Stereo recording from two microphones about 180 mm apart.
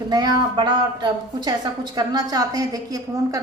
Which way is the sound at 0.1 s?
20° right (ahead or behind).